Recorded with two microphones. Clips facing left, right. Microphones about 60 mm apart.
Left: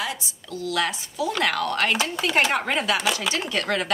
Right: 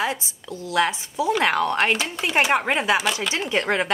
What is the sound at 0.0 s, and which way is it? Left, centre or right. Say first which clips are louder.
A woman's voice: right 5 dB; right.